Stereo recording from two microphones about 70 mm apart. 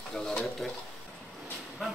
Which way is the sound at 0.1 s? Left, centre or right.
Centre.